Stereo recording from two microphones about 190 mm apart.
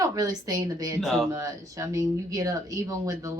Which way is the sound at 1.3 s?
15° right (ahead or behind).